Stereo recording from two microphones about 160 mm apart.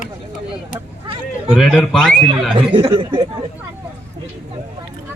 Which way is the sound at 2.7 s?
30° right (ahead or behind).